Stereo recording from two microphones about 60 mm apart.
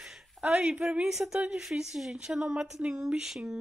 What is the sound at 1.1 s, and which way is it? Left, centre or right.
Speech, centre.